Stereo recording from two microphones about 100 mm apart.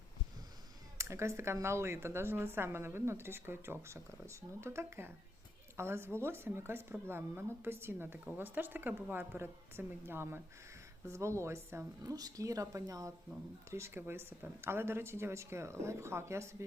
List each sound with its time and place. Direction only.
0.9 s speech: 30° right (ahead or behind)